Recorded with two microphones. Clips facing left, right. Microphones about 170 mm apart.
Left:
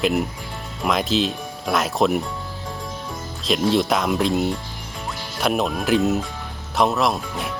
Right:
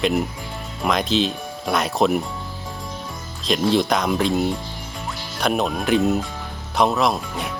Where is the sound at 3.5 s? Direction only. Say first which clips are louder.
Even; centre (ahead or behind).